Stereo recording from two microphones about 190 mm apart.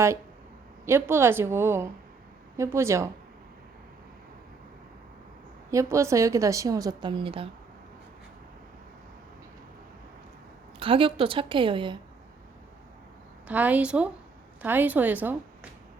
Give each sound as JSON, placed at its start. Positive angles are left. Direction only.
{"t": 0.9, "sound": "a woman's voice", "side_deg": -10}
{"t": 5.7, "sound": "a woman's voice", "side_deg": -15}
{"t": 10.8, "sound": "a woman's voice", "side_deg": -30}
{"t": 13.5, "sound": "a woman's voice", "side_deg": -10}